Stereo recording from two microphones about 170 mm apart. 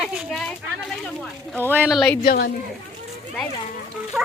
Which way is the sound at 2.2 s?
60° left (ahead or behind).